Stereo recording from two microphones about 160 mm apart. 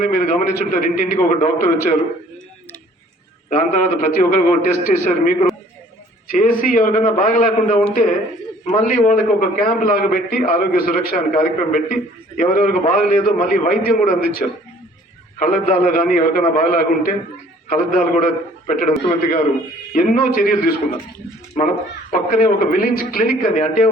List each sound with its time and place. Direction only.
0.0 s a man's voice: 50° left (ahead or behind)
3.5 s a man's voice: 50° left (ahead or behind); by 14.4 s 65° left (ahead or behind)
15.4 s a man's voice: 55° left (ahead or behind)
22.1 s a man's voice: 60° left (ahead or behind)